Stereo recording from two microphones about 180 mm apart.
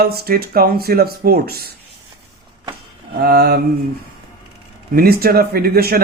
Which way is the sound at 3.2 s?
60° right (ahead or behind).